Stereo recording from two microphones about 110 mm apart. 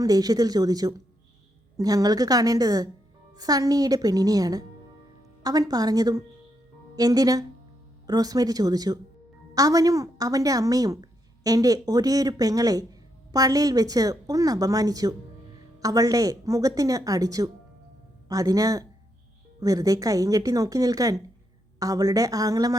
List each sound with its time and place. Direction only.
0.0 s a woman's voice: 35° right (ahead or behind)